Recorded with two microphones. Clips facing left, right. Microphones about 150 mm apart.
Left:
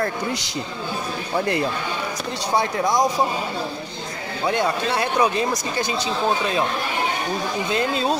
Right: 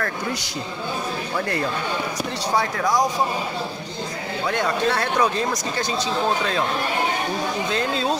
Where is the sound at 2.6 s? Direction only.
20° left (ahead or behind).